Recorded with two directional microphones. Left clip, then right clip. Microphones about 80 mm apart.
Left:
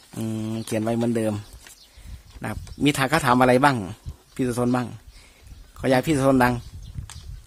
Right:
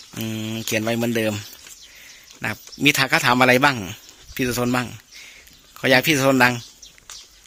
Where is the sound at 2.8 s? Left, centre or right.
Left.